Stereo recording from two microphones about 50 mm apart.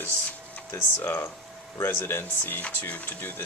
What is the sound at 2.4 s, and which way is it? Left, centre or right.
Speech, left.